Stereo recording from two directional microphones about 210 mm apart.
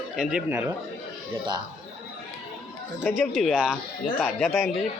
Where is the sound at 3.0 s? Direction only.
5° left (ahead or behind).